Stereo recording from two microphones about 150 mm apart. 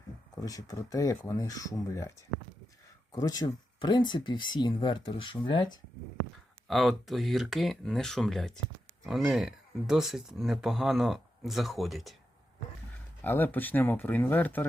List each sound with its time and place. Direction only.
0.3 s speech: 25° left (ahead or behind)
6.7 s speech: centre (ahead or behind)
13.2 s speech: 10° left (ahead or behind)